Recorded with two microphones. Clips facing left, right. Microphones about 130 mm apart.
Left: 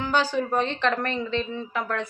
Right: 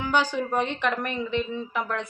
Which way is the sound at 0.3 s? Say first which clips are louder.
Left 2 dB; 15° right (ahead or behind).